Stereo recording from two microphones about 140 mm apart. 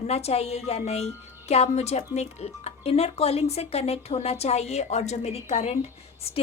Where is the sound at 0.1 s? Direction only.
45° left (ahead or behind).